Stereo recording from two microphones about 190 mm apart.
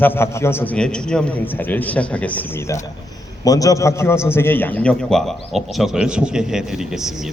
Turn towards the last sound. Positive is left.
turn(degrees=0)  # may be behind; listen again after turning